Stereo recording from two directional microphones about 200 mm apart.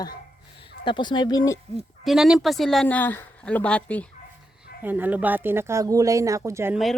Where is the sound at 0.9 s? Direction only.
25° left (ahead or behind).